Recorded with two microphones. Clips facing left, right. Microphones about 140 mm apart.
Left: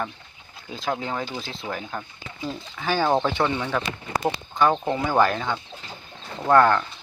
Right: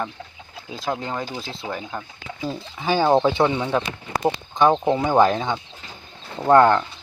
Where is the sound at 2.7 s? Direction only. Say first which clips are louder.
Right 4 dB; 15° right (ahead or behind).